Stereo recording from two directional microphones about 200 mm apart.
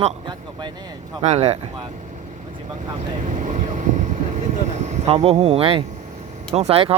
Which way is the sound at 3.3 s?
35° right (ahead or behind).